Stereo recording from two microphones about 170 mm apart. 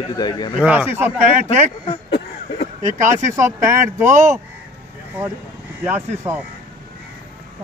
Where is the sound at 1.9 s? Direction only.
35° left (ahead or behind).